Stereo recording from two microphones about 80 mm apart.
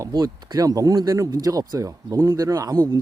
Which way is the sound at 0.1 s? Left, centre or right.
Right.